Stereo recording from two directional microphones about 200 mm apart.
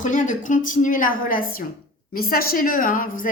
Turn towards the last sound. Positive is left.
turn(degrees=40)  # may be behind; listen again after turning